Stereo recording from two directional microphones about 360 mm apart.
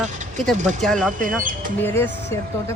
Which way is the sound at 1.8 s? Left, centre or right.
Centre.